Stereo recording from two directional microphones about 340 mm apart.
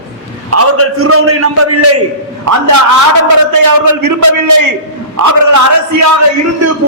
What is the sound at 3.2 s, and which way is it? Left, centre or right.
A man's voice, right.